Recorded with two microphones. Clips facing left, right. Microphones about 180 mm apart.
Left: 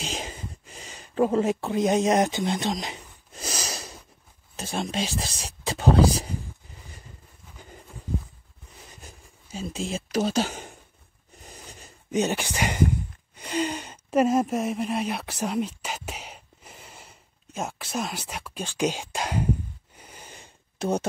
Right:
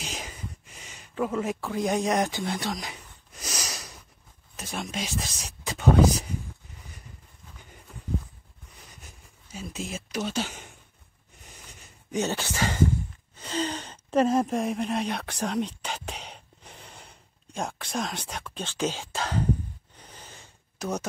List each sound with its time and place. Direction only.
0.0 s a sound: 25° left (ahead or behind)
4.6 s speech: 30° left (ahead or behind)
8.9 s a sound: 30° left (ahead or behind)
10.1 s speech: 40° left (ahead or behind)
12.1 s speech: 15° left (ahead or behind)
20.0 s snort: 10° left (ahead or behind)
20.8 s speech: 30° left (ahead or behind)